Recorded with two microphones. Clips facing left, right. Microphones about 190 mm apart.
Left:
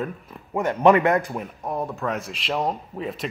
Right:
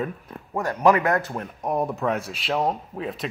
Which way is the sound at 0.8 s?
25° left (ahead or behind).